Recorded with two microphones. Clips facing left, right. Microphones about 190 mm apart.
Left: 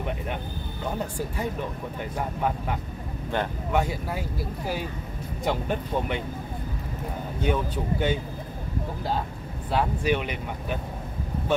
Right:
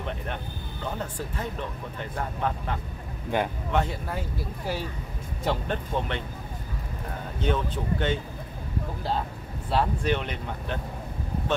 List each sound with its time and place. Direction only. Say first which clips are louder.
0.8 s speech: left 3 dB; 10° left (ahead or behind)
3.3 s speech: right 1 dB; 10° right (ahead or behind)
3.7 s speech: left 2 dB; 5° left (ahead or behind)
5.4 s speech: left 1 dB; 10° left (ahead or behind)
7.4 s speech: left 1 dB; 10° left (ahead or behind)
9.7 s speech: left 1 dB; 5° left (ahead or behind)